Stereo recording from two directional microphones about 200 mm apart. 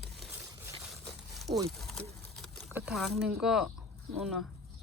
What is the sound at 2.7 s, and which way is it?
Speech, 5° right (ahead or behind).